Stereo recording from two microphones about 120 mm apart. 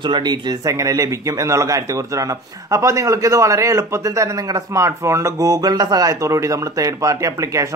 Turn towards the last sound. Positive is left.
turn(degrees=-25)  # may be behind; listen again after turning